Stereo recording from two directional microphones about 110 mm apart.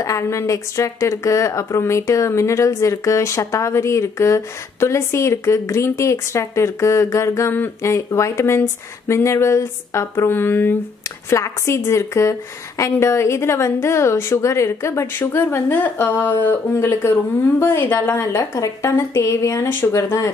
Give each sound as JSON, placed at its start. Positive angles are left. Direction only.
{"t": 0.0, "sound": "speech", "side_deg": 30}